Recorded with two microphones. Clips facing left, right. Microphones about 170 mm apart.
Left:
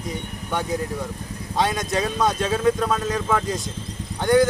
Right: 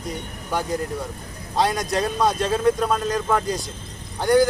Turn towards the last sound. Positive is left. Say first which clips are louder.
# even
turn(degrees=0)  # may be behind; listen again after turning